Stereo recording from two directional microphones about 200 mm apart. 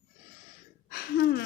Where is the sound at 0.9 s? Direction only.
50° left (ahead or behind).